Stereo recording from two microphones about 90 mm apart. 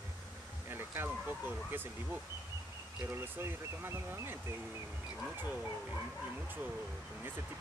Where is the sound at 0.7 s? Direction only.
25° right (ahead or behind).